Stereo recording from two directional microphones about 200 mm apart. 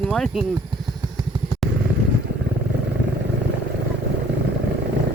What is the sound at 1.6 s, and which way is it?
Vehicle, centre (ahead or behind).